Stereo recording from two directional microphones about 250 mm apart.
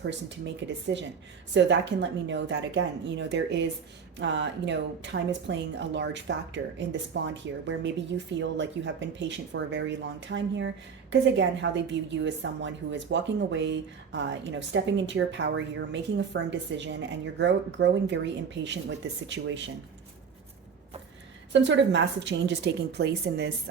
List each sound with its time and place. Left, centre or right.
0.0 s a woman's voice: right
21.5 s a woman's voice: right